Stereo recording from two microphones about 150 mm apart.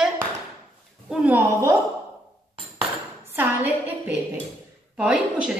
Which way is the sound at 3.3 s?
10° right (ahead or behind).